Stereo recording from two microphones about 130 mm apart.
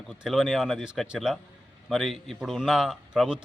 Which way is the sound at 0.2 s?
Centre (ahead or behind).